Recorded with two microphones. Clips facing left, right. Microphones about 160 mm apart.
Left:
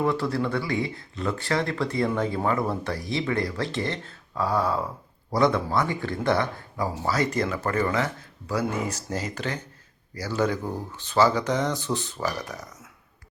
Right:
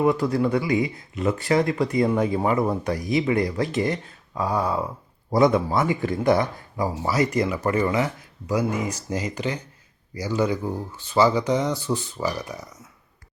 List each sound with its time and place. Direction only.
0.0 s speech: 20° right (ahead or behind)